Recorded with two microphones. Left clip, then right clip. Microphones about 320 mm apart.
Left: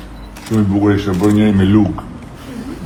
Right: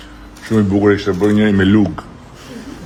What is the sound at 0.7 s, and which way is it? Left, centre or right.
Speech, right.